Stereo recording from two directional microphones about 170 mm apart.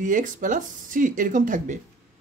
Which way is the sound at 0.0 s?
50° right (ahead or behind).